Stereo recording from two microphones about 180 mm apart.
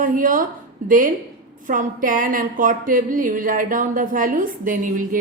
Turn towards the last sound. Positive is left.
turn(degrees=-50)  # may be behind; listen again after turning